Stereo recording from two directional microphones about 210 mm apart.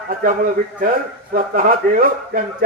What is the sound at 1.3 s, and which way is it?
Speech, 40° right (ahead or behind).